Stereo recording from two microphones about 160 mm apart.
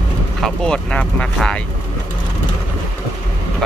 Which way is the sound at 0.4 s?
5° left (ahead or behind).